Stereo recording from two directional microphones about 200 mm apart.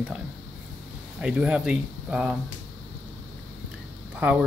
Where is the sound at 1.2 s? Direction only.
5° right (ahead or behind).